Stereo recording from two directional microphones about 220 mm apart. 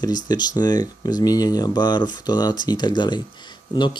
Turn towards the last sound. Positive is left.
turn(degrees=20)  # may be behind; listen again after turning